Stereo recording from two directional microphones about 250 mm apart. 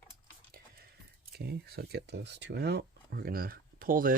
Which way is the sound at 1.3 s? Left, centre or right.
Right.